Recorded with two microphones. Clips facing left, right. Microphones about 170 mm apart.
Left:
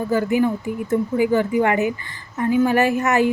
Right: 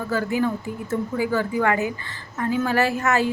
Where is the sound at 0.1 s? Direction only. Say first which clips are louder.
Left 4 dB; 15° left (ahead or behind).